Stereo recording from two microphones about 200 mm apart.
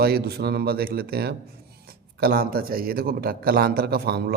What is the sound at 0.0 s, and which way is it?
Speech, 50° right (ahead or behind).